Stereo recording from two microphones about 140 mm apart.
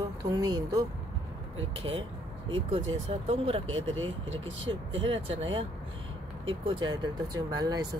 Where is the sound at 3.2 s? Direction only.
45° right (ahead or behind).